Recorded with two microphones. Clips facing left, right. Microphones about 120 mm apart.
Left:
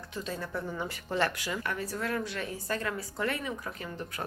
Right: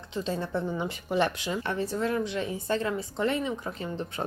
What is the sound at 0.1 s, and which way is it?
Speech, 25° right (ahead or behind).